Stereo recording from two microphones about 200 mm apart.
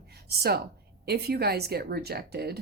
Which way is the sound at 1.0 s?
55° right (ahead or behind).